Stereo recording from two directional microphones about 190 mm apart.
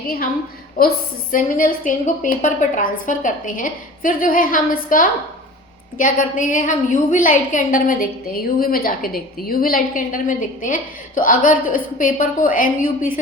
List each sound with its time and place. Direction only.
0.8 s a woman's voice: 50° left (ahead or behind)